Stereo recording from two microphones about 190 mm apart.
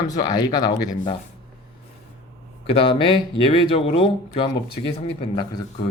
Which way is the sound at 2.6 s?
30° left (ahead or behind).